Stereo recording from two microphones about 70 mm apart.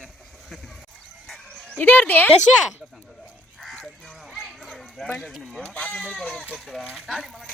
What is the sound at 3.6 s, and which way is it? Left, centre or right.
Crow, centre.